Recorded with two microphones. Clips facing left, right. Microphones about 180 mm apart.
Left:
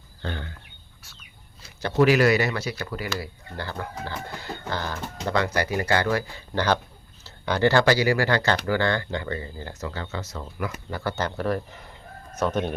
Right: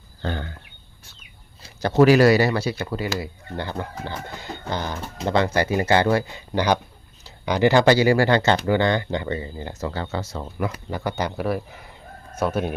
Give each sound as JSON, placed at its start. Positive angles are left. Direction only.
{"t": 0.2, "sound": "speech", "side_deg": -45}
{"t": 2.0, "sound": "speech", "side_deg": -35}
{"t": 9.8, "sound": "speech", "side_deg": -30}
{"t": 10.9, "sound": "speech", "side_deg": -15}